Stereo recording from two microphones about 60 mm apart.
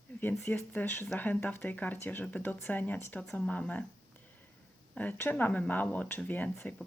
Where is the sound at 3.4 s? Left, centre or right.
Left.